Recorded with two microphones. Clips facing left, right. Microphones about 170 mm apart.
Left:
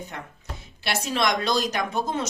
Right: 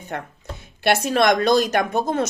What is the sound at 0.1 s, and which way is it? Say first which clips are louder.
Speech: right 7 dB; 60° right (ahead or behind).